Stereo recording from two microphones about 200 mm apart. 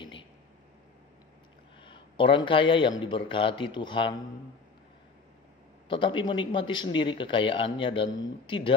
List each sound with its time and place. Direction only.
0.0 s a sound: 25° left (ahead or behind)
1.8 s speech: 25° left (ahead or behind)
5.9 s speech: 25° left (ahead or behind)